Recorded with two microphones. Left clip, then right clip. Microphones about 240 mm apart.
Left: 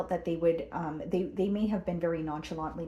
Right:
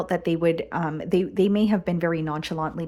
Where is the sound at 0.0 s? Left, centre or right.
Right.